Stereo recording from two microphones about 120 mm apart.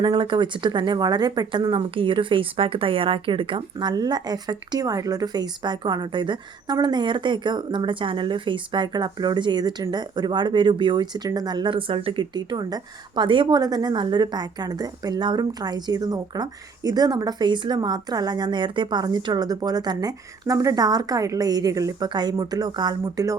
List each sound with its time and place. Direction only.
0.0 s speech: 40° right (ahead or behind)